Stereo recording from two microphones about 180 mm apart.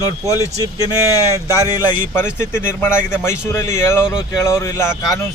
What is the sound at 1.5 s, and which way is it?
Speech, 20° left (ahead or behind).